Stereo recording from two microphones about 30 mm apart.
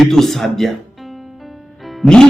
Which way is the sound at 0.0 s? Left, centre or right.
Centre.